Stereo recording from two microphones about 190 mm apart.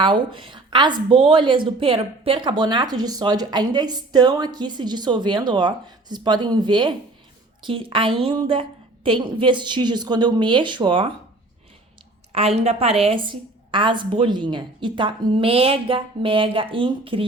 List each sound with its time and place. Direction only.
0.0 s speech: 25° right (ahead or behind)
12.3 s speech: 35° right (ahead or behind)